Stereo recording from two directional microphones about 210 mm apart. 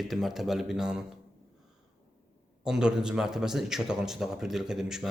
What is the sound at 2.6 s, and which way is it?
A man's voice, 5° right (ahead or behind).